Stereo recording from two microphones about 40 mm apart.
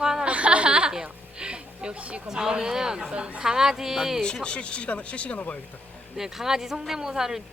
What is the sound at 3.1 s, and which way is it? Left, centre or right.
Speech, right.